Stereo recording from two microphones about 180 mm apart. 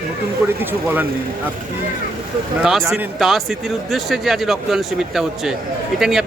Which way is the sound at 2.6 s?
Centre (ahead or behind).